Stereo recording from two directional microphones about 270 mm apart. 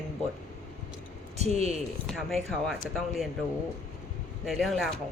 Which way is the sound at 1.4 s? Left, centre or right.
Right.